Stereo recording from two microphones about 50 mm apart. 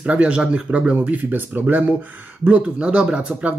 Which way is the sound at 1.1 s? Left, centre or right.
Right.